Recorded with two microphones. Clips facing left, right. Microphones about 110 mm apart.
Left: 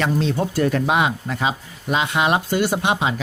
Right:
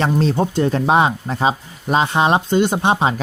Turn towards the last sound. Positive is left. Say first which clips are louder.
# right 3 dB
turn(degrees=-35)  # may be behind; listen again after turning